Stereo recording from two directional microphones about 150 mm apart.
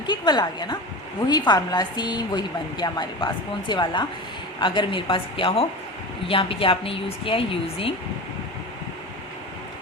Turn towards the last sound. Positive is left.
turn(degrees=40)  # may be behind; listen again after turning